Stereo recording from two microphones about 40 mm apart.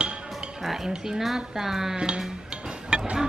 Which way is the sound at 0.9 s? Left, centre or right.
Centre.